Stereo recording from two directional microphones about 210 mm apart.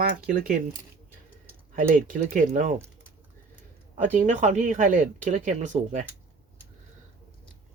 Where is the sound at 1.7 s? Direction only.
40° right (ahead or behind).